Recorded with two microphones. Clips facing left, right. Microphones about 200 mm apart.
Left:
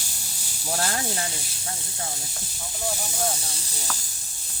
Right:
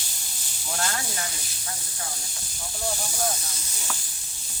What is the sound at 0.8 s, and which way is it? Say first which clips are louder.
Speech: left 2 dB; 35° left (ahead or behind).